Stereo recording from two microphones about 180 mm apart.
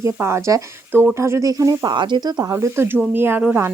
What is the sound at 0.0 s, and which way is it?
Speech, 15° right (ahead or behind).